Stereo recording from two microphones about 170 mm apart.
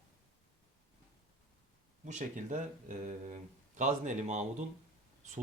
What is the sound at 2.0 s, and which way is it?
Speech, 45° right (ahead or behind).